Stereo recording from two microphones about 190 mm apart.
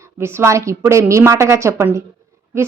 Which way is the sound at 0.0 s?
15° right (ahead or behind).